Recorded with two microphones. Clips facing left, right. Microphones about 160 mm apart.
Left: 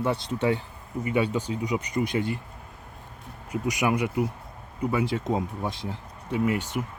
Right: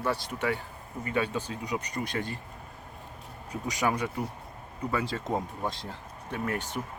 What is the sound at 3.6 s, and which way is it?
Speech, 15° left (ahead or behind).